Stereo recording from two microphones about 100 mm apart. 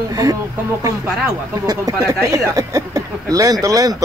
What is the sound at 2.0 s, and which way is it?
Speech, 30° right (ahead or behind).